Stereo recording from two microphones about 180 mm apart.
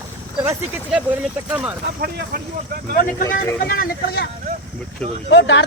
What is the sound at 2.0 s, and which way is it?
Speech, 55° right (ahead or behind).